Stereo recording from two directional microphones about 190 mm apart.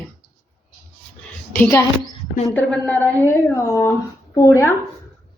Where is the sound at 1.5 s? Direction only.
10° left (ahead or behind).